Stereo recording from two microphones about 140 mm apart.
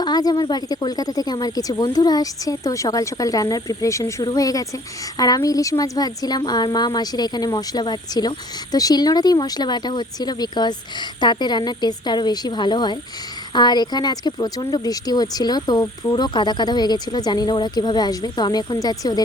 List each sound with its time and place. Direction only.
0.0 s a woman's voice: 30° left (ahead or behind)